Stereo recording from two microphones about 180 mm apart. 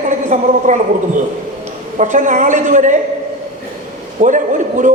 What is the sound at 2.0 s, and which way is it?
Speech, 45° right (ahead or behind).